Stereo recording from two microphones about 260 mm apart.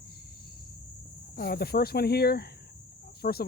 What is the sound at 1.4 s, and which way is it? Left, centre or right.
Cricket, left.